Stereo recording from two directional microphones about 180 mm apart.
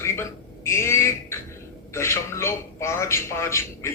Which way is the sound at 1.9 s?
15° left (ahead or behind).